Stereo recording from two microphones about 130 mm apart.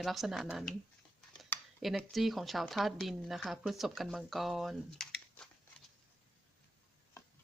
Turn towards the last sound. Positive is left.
turn(degrees=30)  # may be behind; listen again after turning